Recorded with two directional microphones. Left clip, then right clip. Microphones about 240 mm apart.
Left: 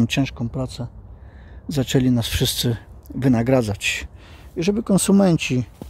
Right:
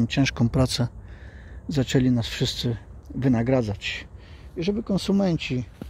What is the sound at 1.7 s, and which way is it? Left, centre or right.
Speech, centre.